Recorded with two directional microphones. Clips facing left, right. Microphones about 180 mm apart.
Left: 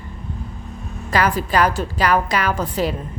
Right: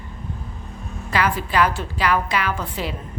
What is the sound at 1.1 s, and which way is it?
A woman's voice, 40° left (ahead or behind).